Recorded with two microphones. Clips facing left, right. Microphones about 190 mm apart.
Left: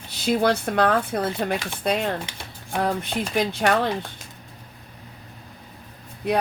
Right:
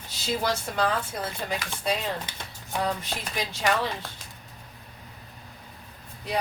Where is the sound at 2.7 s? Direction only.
60° left (ahead or behind).